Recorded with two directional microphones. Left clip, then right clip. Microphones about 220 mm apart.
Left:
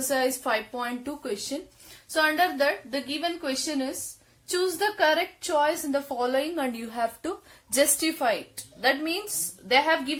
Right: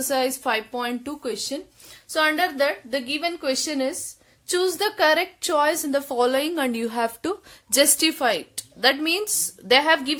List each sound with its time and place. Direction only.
0.1 s a woman's voice: 40° right (ahead or behind)